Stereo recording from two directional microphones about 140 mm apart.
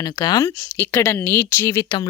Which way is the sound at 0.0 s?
25° left (ahead or behind).